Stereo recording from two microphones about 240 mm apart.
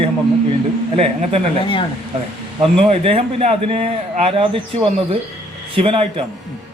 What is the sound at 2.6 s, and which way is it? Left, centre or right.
Speech, right.